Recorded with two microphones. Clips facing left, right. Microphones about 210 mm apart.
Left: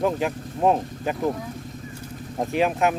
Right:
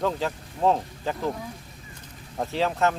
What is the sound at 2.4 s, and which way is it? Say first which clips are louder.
Speech: left 3 dB; 15° left (ahead or behind).